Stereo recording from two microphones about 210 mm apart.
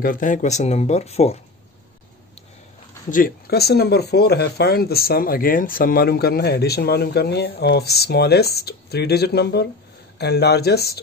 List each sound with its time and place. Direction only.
0.0 s speech: 40° left (ahead or behind)
3.1 s speech: 40° left (ahead or behind)